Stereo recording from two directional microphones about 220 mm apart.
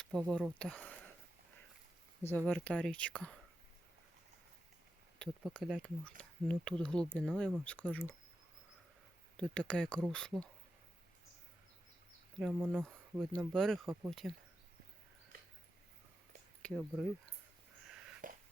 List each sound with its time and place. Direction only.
0.0 s speech: centre (ahead or behind)
2.2 s speech: 5° left (ahead or behind)
5.2 s speech: centre (ahead or behind)
9.4 s speech: 5° left (ahead or behind)
12.4 s speech: 5° right (ahead or behind)
16.6 s speech: centre (ahead or behind)
18.2 s a sound: 35° right (ahead or behind)